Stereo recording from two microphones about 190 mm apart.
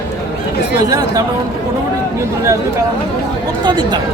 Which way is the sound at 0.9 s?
20° right (ahead or behind).